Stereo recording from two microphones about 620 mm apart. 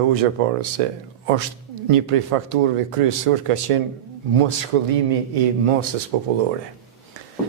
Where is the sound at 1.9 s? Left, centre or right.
Right.